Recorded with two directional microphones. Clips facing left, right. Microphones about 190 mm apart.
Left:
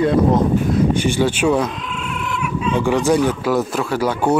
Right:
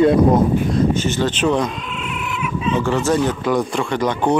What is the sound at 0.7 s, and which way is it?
Speech, 15° left (ahead or behind).